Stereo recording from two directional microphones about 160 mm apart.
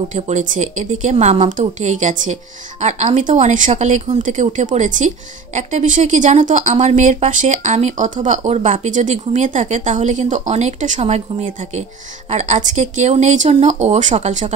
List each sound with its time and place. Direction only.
0.1 s a woman's voice: 50° right (ahead or behind)